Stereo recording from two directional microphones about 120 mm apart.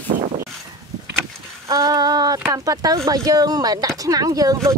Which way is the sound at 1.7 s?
30° right (ahead or behind).